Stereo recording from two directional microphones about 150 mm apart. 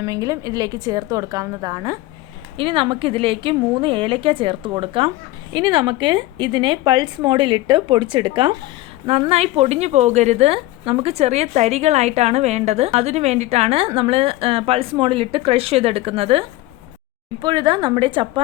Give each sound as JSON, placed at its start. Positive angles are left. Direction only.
{"t": 0.0, "sound": "a woman's voice", "side_deg": -25}
{"t": 2.6, "sound": "a woman's voice", "side_deg": -35}